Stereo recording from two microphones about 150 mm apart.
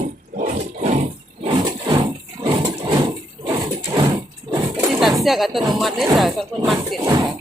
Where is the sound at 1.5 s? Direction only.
35° right (ahead or behind).